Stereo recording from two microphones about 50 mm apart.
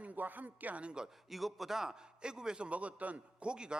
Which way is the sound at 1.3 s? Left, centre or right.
Centre.